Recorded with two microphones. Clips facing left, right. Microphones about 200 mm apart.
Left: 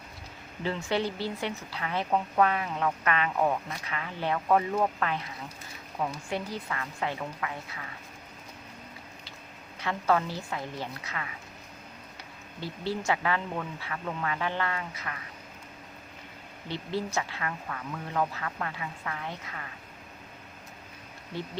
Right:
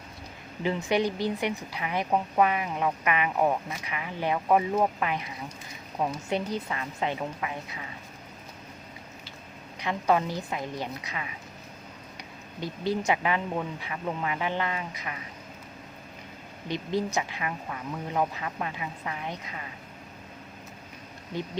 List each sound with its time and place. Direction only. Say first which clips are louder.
0.6 s a woman's voice: right 3 dB; 15° right (ahead or behind)
9.8 s a woman's voice: right 2 dB; 15° right (ahead or behind)
12.5 s a woman's voice: right 4 dB; 15° right (ahead or behind)
16.6 s a woman's voice: right 4 dB; 15° right (ahead or behind)